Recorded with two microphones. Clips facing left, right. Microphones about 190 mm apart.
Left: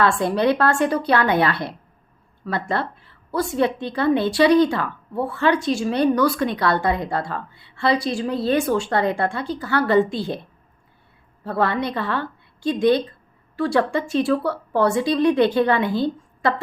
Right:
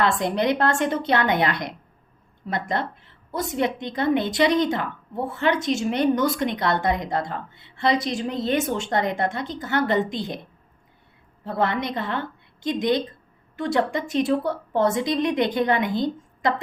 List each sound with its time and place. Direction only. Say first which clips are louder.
0.0 s a woman's voice: left 3 dB; 20° right (ahead or behind)
11.4 s a woman's voice: left 2 dB; 20° right (ahead or behind)